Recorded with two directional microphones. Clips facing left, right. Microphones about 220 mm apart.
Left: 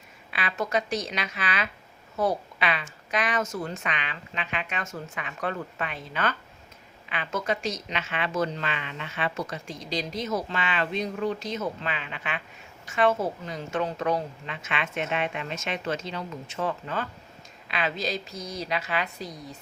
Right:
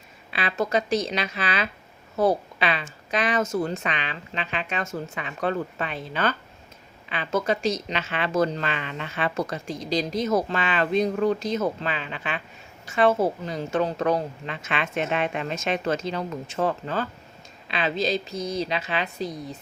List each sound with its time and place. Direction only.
0.3 s a woman's voice: 30° right (ahead or behind)